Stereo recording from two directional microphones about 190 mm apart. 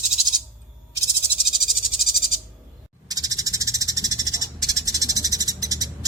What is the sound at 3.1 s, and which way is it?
Frog, 20° right (ahead or behind).